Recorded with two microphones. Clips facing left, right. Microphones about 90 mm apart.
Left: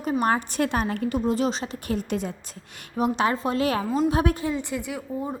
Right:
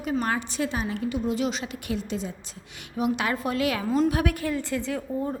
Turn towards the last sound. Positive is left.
turn(degrees=10)  # may be behind; listen again after turning